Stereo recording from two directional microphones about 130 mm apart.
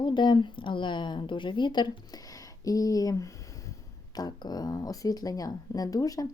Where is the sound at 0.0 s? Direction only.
35° left (ahead or behind).